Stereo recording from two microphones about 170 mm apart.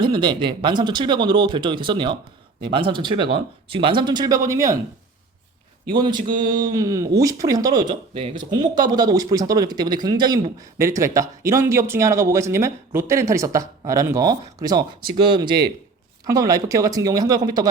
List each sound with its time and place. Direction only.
0.0 s speech: 25° right (ahead or behind)
5.9 s speech: 25° right (ahead or behind)